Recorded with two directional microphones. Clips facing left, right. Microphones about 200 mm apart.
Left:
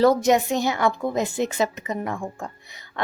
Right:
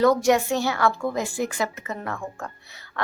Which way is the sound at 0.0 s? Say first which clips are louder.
Left 1 dB; 25° left (ahead or behind).